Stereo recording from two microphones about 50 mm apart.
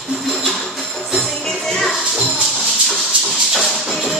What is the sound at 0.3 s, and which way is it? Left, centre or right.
Music, centre.